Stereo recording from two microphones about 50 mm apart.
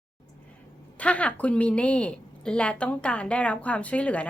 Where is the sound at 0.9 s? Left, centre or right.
Left.